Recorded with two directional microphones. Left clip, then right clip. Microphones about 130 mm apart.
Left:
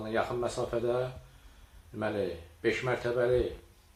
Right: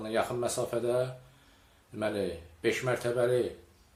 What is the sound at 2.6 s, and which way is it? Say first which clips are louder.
Speech: even; 25° right (ahead or behind).